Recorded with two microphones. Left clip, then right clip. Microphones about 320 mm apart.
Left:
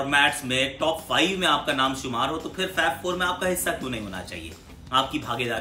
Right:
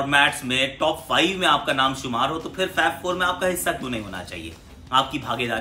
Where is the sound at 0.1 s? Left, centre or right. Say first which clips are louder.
Right 2 dB; centre.